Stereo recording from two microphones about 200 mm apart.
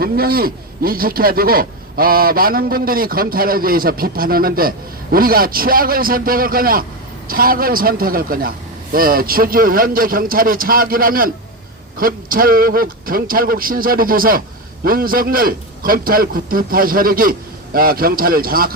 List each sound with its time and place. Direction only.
0.0 s a man's voice: 50° right (ahead or behind)